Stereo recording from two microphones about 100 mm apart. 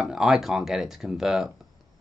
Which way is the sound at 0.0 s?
5° right (ahead or behind).